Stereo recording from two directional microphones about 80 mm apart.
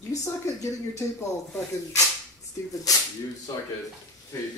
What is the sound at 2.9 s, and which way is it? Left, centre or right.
Speech, left.